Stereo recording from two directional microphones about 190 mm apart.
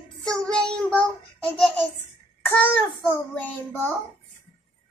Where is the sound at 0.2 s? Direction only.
5° left (ahead or behind).